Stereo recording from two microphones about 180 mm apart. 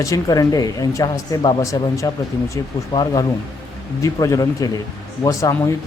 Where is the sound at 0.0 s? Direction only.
20° left (ahead or behind).